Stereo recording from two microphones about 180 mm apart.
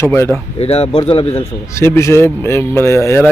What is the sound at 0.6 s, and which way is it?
Speech, 35° left (ahead or behind).